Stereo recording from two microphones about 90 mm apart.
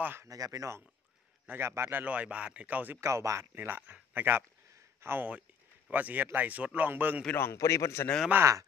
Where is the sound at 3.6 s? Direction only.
20° right (ahead or behind).